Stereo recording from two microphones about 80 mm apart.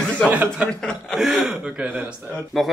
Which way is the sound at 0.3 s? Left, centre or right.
Centre.